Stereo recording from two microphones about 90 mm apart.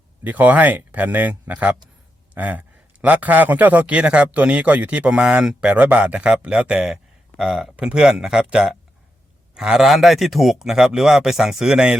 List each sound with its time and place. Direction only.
0.3 s a man's voice: 20° right (ahead or behind)